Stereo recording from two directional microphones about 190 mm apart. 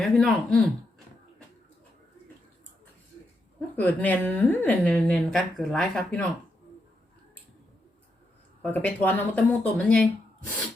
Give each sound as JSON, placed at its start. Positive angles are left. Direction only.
{"t": 0.0, "sound": "speech", "side_deg": 5}
{"t": 3.8, "sound": "a woman's voice", "side_deg": 10}
{"t": 8.6, "sound": "a woman's voice", "side_deg": 10}